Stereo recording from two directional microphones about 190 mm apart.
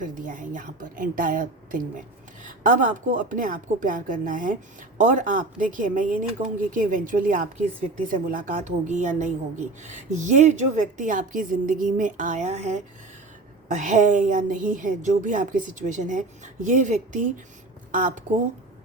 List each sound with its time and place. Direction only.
0.0 s a woman's voice: 45° right (ahead or behind)